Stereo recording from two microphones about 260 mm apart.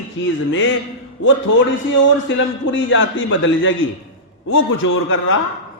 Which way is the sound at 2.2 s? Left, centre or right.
Left.